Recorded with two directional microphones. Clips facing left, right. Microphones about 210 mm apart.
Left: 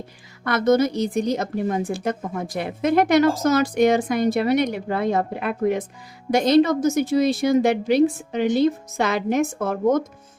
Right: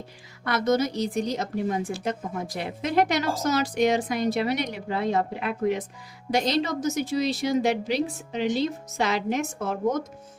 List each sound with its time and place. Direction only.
0.4 s a woman's voice: 50° left (ahead or behind)